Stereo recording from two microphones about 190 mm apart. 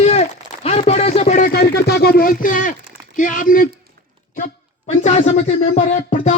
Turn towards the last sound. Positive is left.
turn(degrees=40)  # may be behind; listen again after turning